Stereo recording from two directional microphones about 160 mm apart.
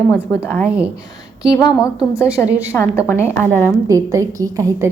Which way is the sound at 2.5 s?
10° right (ahead or behind).